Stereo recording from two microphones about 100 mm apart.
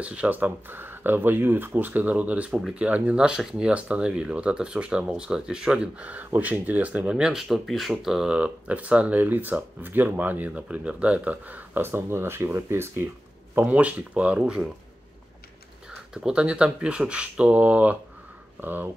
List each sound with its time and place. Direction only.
0.0 s speech: 15° right (ahead or behind)
13.6 s speech: 15° right (ahead or behind)
16.1 s speech: 10° right (ahead or behind)